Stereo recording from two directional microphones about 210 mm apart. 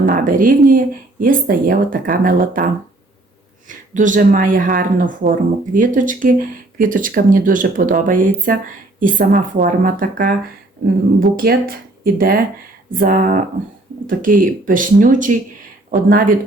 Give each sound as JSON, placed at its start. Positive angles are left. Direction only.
{"t": 0.0, "sound": "speech", "side_deg": -40}
{"t": 3.7, "sound": "speech", "side_deg": -40}
{"t": 11.3, "sound": "speech", "side_deg": -45}